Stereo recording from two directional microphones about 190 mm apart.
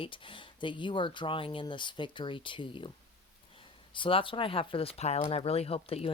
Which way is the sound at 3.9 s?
25° left (ahead or behind).